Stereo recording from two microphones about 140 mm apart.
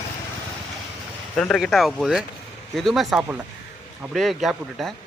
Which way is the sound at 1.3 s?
5° left (ahead or behind).